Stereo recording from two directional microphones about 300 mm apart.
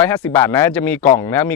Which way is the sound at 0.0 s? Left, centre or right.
Centre.